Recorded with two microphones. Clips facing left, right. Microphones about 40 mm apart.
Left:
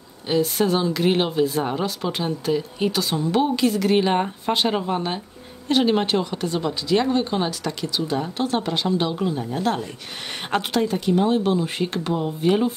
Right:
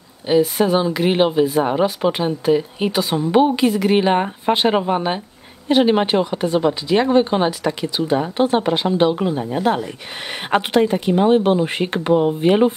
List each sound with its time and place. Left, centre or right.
0.3 s speech: centre; by 12.7 s right